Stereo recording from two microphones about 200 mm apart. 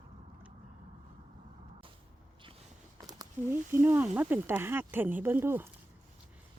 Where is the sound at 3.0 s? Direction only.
20° right (ahead or behind).